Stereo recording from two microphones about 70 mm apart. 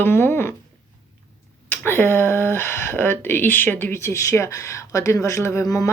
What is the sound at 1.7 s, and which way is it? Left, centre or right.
Speech, left.